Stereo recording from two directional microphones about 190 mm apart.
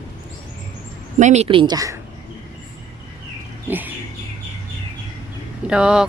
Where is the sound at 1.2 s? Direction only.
35° right (ahead or behind); by 2.0 s 20° right (ahead or behind).